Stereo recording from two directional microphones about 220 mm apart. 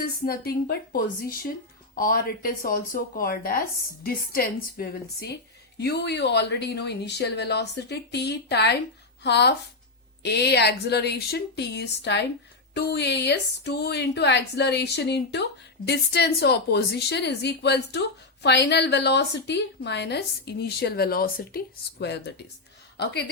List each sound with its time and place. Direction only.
0.0 s a woman's voice: 45° left (ahead or behind)